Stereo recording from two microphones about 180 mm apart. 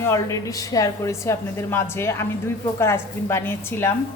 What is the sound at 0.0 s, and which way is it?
A woman's voice, 15° left (ahead or behind).